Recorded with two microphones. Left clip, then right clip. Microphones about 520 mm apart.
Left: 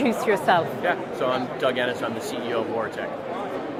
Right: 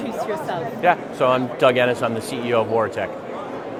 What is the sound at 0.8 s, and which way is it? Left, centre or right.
Speech, right.